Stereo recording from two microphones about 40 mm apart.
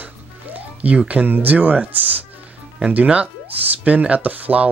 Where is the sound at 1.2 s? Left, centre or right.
Right.